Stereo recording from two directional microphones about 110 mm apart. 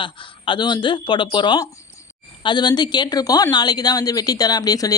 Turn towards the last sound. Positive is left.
turn(degrees=35)  # may be behind; listen again after turning